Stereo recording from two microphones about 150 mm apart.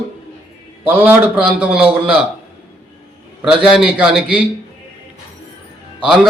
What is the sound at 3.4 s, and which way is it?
A man's voice, centre (ahead or behind).